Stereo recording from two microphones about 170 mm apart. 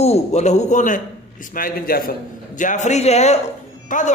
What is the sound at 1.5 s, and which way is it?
Speech, 60° left (ahead or behind).